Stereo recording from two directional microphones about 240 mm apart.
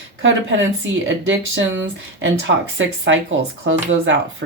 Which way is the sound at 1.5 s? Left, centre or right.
Right.